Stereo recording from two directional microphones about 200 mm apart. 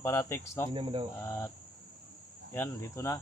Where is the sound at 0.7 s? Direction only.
25° right (ahead or behind).